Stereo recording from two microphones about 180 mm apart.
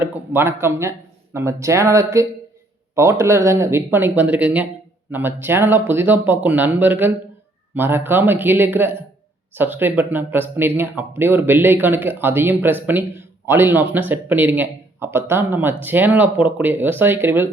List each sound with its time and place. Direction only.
0.0 s speech: 10° right (ahead or behind)